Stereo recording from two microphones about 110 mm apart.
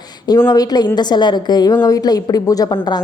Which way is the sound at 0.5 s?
35° left (ahead or behind).